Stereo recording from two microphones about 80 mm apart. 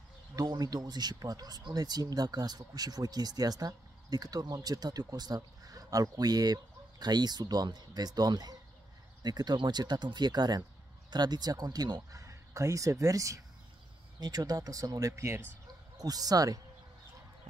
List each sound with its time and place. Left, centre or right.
0.4 s speech: right
14.2 s speech: right
16.0 s speech: right